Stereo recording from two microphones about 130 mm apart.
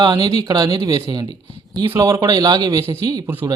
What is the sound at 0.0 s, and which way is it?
Speech, 30° right (ahead or behind).